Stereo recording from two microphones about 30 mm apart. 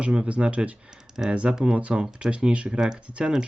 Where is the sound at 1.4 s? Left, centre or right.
Right.